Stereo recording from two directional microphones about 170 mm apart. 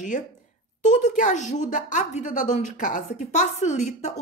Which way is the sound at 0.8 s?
45° left (ahead or behind).